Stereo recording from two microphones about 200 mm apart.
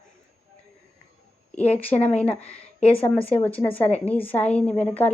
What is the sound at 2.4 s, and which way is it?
Speech, 30° left (ahead or behind).